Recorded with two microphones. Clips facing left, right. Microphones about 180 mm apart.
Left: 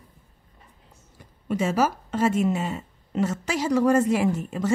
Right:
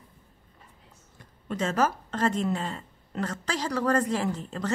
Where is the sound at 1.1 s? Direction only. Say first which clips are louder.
Left 5 dB; 10° left (ahead or behind).